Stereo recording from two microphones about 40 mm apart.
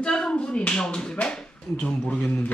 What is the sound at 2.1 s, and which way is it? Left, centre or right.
Speech, left.